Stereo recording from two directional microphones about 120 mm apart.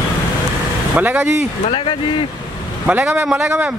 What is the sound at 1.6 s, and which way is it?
Speech, 50° left (ahead or behind).